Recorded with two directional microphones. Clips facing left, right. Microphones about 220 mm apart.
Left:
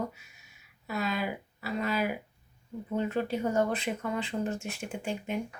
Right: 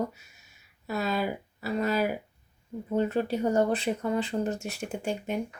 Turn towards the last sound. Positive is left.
turn(degrees=-40)  # may be behind; listen again after turning